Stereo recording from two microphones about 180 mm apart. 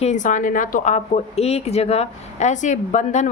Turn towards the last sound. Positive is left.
turn(degrees=40)  # may be behind; listen again after turning